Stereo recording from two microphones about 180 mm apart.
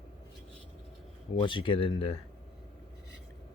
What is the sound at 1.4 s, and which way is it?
Speech, 25° left (ahead or behind).